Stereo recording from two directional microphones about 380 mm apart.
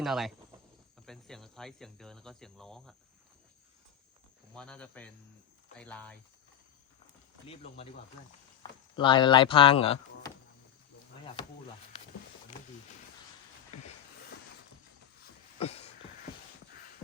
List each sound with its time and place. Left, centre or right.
0.0 s speech: centre
4.5 s speech: centre
7.4 s speech: centre
9.0 s speech: centre
15.5 s a sound: centre